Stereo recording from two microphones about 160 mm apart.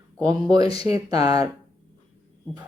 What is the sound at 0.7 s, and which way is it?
Speech, 25° right (ahead or behind).